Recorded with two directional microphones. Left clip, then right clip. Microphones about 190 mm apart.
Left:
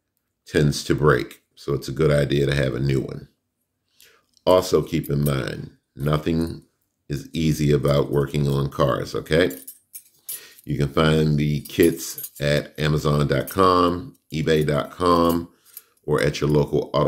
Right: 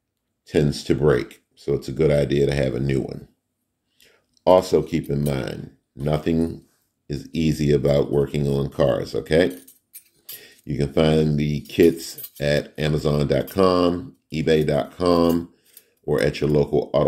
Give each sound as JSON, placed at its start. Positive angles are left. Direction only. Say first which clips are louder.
{"t": 0.5, "sound": "speech", "louder": "even", "side_deg": 0}